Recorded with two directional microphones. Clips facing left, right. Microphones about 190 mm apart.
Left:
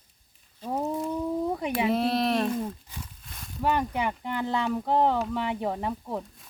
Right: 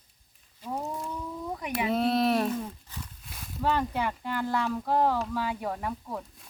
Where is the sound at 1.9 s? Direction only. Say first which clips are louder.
Right 4 dB; centre (ahead or behind).